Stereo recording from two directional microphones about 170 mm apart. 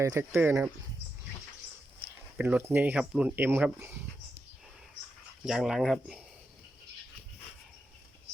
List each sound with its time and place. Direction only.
0.0 s speech: 15° right (ahead or behind)
2.0 s speech: 10° right (ahead or behind)
5.5 s speech: 5° right (ahead or behind)